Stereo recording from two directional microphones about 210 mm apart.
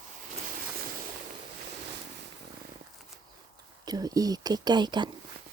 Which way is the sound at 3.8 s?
20° right (ahead or behind).